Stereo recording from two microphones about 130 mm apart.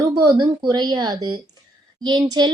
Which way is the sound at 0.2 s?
30° right (ahead or behind).